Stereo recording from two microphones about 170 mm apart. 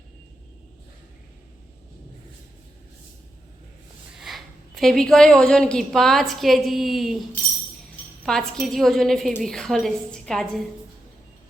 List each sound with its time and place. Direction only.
4.2 s a woman's voice: centre (ahead or behind)
8.2 s a woman's voice: centre (ahead or behind)